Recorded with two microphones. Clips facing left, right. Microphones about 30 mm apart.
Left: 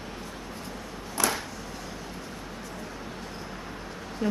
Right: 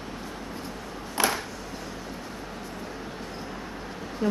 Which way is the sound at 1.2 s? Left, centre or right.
Right.